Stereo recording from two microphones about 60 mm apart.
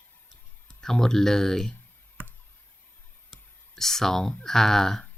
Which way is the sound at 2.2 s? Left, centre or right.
Right.